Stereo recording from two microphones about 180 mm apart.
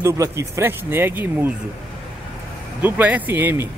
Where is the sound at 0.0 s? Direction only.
15° right (ahead or behind).